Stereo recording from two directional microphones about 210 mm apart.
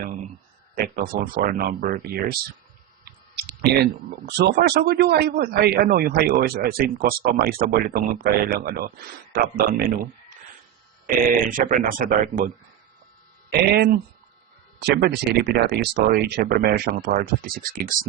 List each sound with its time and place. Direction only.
0.8 s speech: 40° right (ahead or behind)
3.0 s clicking: 50° right (ahead or behind)
4.3 s speech: 50° right (ahead or behind)
11.5 s speech: 40° right (ahead or behind)
13.5 s speech: 50° right (ahead or behind)